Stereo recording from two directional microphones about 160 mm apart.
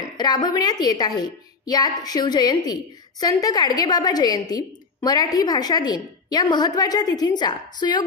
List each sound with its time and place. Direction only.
0.2 s a woman's voice: 25° left (ahead or behind)